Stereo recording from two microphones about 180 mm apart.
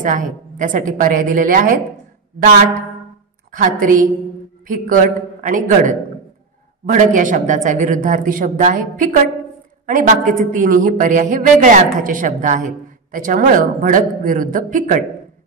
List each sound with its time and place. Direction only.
0.0 s a woman's voice: 45° right (ahead or behind)
3.5 s a woman's voice: 50° right (ahead or behind)